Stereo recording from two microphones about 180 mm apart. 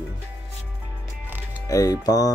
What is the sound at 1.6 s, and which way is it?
Speech, 20° left (ahead or behind).